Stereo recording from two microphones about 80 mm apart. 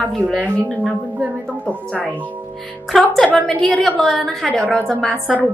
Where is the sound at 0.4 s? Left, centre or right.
Centre.